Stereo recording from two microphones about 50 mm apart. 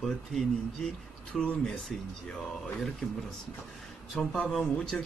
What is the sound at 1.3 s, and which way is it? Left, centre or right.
Speech, centre.